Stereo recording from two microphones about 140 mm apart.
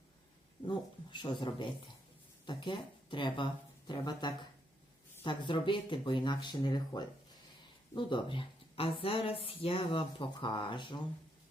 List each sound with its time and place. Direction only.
0.6 s speech: 35° left (ahead or behind)